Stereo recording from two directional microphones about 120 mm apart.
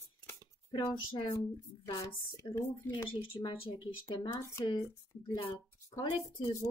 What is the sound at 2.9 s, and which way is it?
Speech, 40° left (ahead or behind).